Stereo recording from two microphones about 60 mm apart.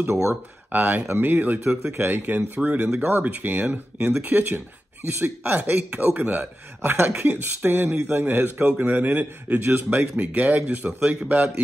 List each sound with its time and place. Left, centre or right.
0.7 s speech: right